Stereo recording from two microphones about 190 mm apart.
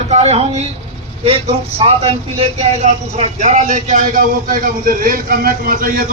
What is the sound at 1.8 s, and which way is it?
Speech, 30° right (ahead or behind).